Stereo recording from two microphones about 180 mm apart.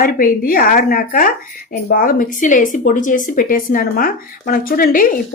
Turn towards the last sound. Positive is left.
turn(degrees=50)  # may be behind; listen again after turning